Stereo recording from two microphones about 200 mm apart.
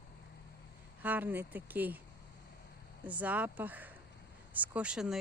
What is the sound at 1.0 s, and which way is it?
Speech, 10° right (ahead or behind).